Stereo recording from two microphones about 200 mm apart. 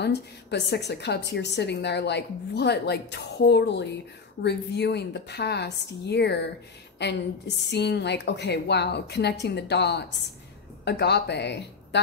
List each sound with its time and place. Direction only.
0.0 s a woman's voice: 55° left (ahead or behind)